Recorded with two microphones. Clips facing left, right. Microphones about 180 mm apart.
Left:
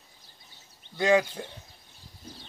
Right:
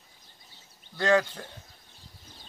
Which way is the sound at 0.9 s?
15° left (ahead or behind).